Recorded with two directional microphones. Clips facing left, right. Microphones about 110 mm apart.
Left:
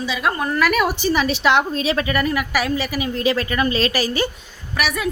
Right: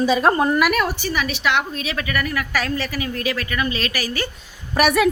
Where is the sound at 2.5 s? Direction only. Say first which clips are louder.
Left 2 dB; 10° left (ahead or behind).